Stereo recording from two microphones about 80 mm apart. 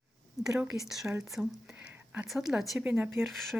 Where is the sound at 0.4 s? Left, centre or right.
Centre.